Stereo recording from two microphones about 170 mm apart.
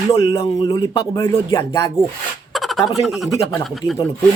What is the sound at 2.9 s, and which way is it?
Speech, centre (ahead or behind).